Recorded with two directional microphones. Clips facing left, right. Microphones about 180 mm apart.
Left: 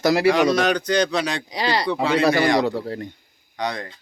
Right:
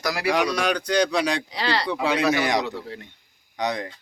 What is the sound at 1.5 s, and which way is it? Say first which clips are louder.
Speech: left 3 dB; 15° left (ahead or behind).